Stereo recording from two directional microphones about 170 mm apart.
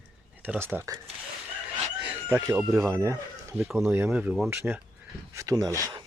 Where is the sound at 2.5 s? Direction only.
10° right (ahead or behind).